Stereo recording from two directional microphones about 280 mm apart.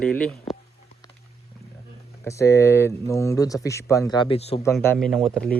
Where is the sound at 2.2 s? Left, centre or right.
Centre.